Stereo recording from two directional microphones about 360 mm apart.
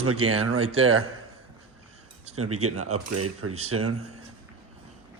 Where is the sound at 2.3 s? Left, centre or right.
Right.